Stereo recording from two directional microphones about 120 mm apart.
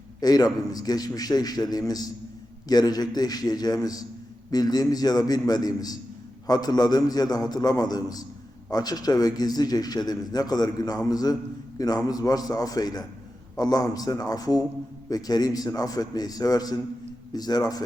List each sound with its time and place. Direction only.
0.2 s a man's voice: 35° left (ahead or behind)